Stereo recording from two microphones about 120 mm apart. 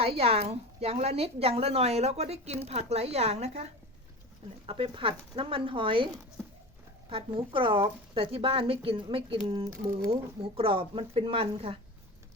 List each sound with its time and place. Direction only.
0.0 s a woman's voice: 55° right (ahead or behind)
4.6 s a woman's voice: 50° right (ahead or behind)
7.1 s a woman's voice: 50° right (ahead or behind)